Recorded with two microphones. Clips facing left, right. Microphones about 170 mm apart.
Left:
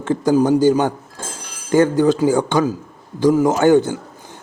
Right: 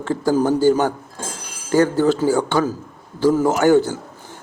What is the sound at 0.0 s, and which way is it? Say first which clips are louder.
A man's voice: left 3 dB; 20° left (ahead or behind).